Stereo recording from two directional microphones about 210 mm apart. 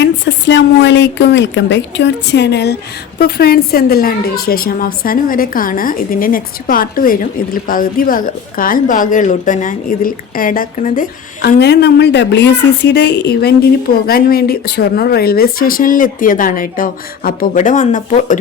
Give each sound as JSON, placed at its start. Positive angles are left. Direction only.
{"t": 0.0, "sound": "a woman's voice", "side_deg": 55}
{"t": 11.4, "sound": "a woman's voice", "side_deg": 50}